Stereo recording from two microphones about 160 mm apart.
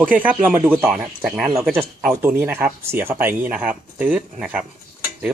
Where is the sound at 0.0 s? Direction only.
10° right (ahead or behind).